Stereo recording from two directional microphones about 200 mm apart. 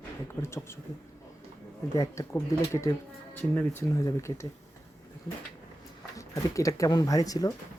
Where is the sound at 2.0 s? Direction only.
15° left (ahead or behind).